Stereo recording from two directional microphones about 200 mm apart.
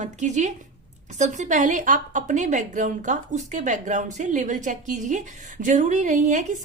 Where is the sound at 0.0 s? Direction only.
35° right (ahead or behind).